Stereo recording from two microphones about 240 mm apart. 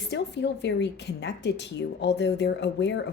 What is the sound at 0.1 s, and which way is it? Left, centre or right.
A woman's voice, left.